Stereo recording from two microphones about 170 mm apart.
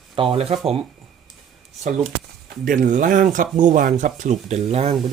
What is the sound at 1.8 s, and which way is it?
Speech, 45° right (ahead or behind).